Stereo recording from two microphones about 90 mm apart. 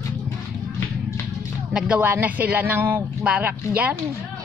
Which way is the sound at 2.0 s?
20° right (ahead or behind).